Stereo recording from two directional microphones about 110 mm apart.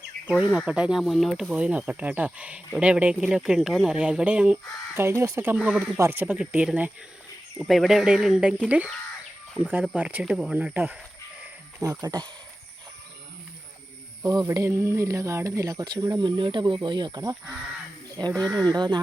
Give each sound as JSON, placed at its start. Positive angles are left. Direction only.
{"t": 0.5, "sound": "speech", "side_deg": -10}
{"t": 4.9, "sound": "speech", "side_deg": -25}
{"t": 5.5, "sound": "speech", "side_deg": -10}
{"t": 7.6, "sound": "speech", "side_deg": 0}
{"t": 9.9, "sound": "speech", "side_deg": -15}
{"t": 11.8, "sound": "speech", "side_deg": -35}
{"t": 14.3, "sound": "speech", "side_deg": -30}